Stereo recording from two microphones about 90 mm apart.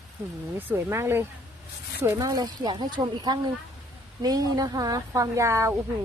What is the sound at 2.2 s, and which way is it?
Speech, 50° right (ahead or behind).